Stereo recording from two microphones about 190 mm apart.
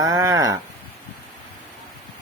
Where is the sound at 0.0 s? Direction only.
15° right (ahead or behind).